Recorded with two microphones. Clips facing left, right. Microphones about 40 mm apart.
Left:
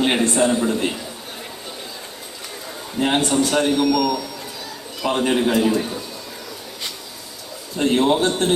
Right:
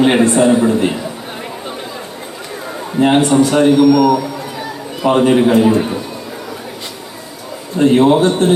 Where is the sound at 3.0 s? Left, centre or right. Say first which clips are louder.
Right 8 dB; right.